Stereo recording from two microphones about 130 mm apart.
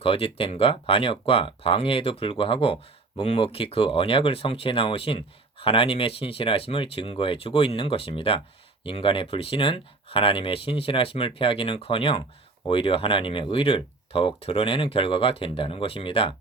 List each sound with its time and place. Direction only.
0.0 s speech: 45° left (ahead or behind)